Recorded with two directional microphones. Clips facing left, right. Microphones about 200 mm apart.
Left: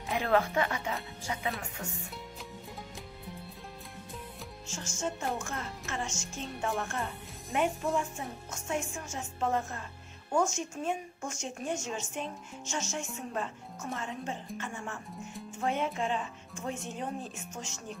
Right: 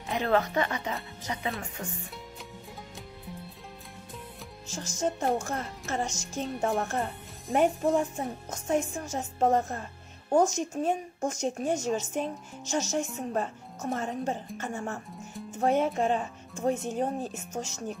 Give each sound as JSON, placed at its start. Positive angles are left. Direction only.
{"t": 0.1, "sound": "speech", "side_deg": 5}
{"t": 4.6, "sound": "speech", "side_deg": -35}